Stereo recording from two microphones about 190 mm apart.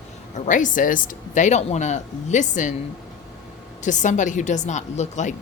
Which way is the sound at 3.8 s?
40° left (ahead or behind).